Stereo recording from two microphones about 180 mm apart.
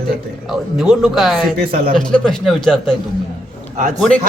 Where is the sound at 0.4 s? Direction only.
Centre (ahead or behind).